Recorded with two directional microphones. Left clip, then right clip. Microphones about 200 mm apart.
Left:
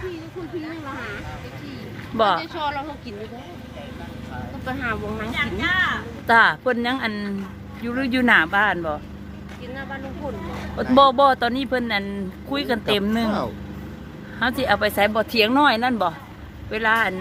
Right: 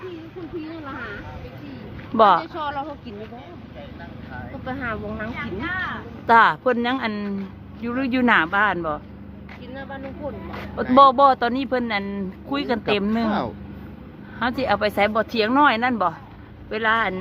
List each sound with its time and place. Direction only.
2.1 s speech: 30° right (ahead or behind)
4.6 s speech: 25° right (ahead or behind)
5.4 s speech: 50° left (ahead or behind)
6.2 s speech: 20° right (ahead or behind)
10.9 s speech: 15° right (ahead or behind)
14.3 s speech: 15° right (ahead or behind)